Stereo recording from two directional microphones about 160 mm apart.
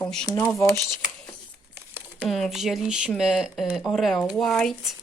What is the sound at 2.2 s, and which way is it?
Speech, centre (ahead or behind).